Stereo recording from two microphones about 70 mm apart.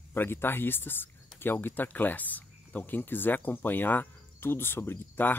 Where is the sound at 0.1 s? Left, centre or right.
Left.